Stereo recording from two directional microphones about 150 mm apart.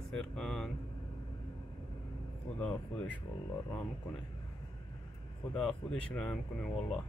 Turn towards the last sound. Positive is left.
turn(degrees=5)  # may be behind; listen again after turning